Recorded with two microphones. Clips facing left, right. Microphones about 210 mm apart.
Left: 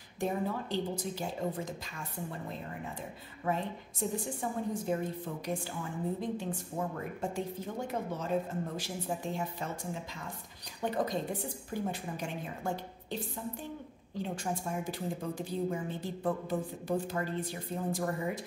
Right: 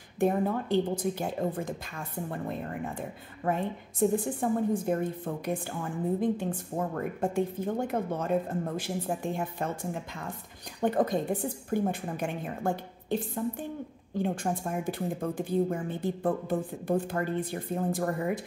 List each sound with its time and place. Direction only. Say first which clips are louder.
0.2 s a woman's voice: right 7 dB; 55° right (ahead or behind)
10.8 s a woman's voice: right 6 dB; 55° right (ahead or behind)